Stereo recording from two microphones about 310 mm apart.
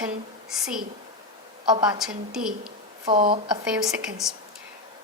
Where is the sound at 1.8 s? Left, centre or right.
Centre.